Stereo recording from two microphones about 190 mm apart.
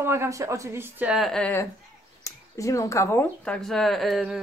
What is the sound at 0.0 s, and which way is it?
Speech, 15° right (ahead or behind).